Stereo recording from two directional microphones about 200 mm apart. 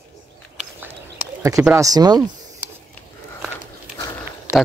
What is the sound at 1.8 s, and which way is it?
Speech, 20° right (ahead or behind).